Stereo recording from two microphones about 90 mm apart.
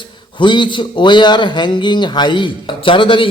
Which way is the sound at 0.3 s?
60° left (ahead or behind).